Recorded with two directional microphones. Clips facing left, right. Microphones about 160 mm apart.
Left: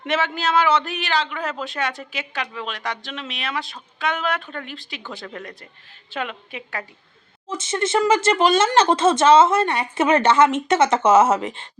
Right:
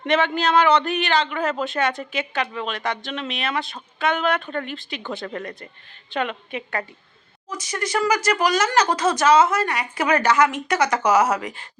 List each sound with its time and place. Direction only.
0.0 s a man's voice: 5° left (ahead or behind)
7.4 s speech: 25° left (ahead or behind)